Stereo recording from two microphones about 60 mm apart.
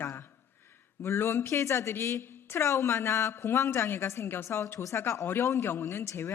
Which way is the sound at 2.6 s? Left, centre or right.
Left.